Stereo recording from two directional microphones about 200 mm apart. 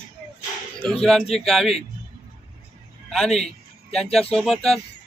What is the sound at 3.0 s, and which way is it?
A man's voice, centre (ahead or behind).